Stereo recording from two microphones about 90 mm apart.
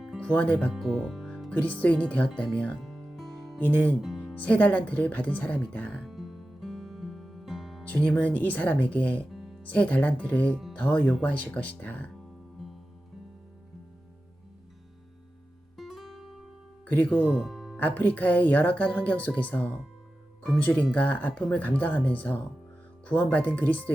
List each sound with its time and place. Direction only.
0.2 s speech: 15° left (ahead or behind)
0.7 s speech: 5° right (ahead or behind)
1.5 s speech: 15° left (ahead or behind)
2.8 s music: centre (ahead or behind)
3.6 s speech: 20° left (ahead or behind)
6.1 s music: 5° right (ahead or behind)
7.9 s speech: 15° left (ahead or behind)
15.8 s music: centre (ahead or behind)
16.8 s speech: 20° left (ahead or behind)
17.3 s music: centre (ahead or behind)
17.7 s speech: 20° left (ahead or behind)